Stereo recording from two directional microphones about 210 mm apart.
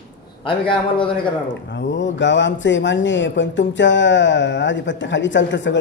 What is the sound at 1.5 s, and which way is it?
Speech, 55° left (ahead or behind).